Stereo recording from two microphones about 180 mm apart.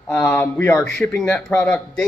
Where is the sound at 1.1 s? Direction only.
Centre (ahead or behind).